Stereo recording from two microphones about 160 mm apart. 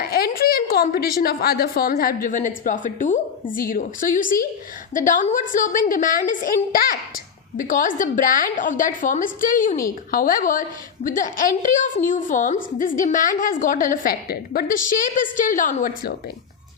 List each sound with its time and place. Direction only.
0.0 s a woman's voice: 70° left (ahead or behind); by 16.1 s 55° left (ahead or behind)